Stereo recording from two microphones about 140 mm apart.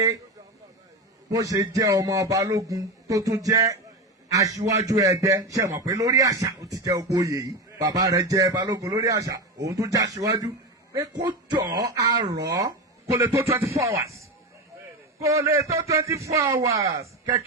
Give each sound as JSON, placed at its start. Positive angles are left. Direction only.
{"t": 1.3, "sound": "a man's voice", "side_deg": -25}